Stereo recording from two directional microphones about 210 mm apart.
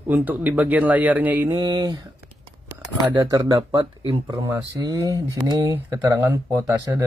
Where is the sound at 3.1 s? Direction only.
15° right (ahead or behind).